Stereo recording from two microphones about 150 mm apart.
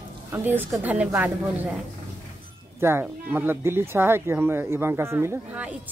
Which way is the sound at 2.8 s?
15° right (ahead or behind).